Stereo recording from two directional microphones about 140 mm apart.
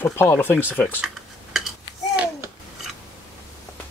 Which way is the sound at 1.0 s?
Centre (ahead or behind).